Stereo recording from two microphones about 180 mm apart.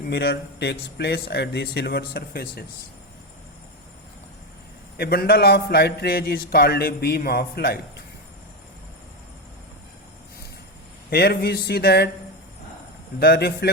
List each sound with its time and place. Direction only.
0.0 s a man's voice: 60° left (ahead or behind)
4.9 s a man's voice: 60° left (ahead or behind)
11.1 s a man's voice: 60° left (ahead or behind)
13.1 s a man's voice: 60° left (ahead or behind)